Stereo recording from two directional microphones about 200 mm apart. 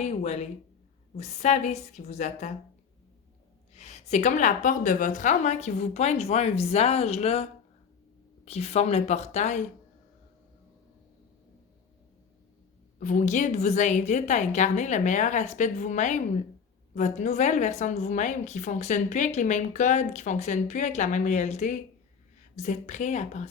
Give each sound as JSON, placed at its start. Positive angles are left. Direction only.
{"t": 0.0, "sound": "a woman's voice", "side_deg": 35}
{"t": 3.8, "sound": "a woman's voice", "side_deg": 35}
{"t": 8.4, "sound": "a woman's voice", "side_deg": 30}
{"t": 13.0, "sound": "a woman's voice", "side_deg": 40}